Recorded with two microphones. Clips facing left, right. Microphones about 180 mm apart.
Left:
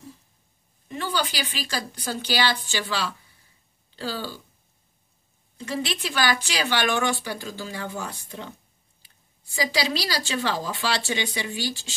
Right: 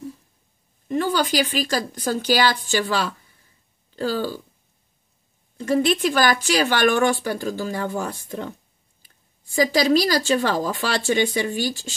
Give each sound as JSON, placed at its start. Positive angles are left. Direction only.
{"t": 0.8, "sound": "speech", "side_deg": -45}
{"t": 5.6, "sound": "speech", "side_deg": -50}